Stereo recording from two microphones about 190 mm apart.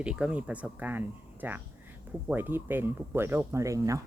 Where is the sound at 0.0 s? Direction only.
5° right (ahead or behind).